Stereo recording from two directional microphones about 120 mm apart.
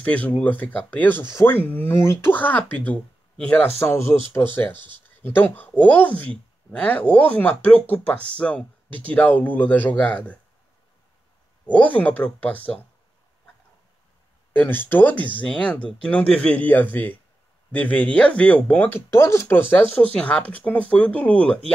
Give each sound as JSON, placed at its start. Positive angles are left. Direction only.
{"t": 0.0, "sound": "speech", "side_deg": 15}
{"t": 11.7, "sound": "speech", "side_deg": 15}
{"t": 14.5, "sound": "speech", "side_deg": 15}
{"t": 19.0, "sound": "speech", "side_deg": 20}